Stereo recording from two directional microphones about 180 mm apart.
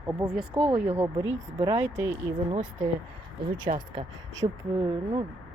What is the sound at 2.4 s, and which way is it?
Speech, 30° right (ahead or behind).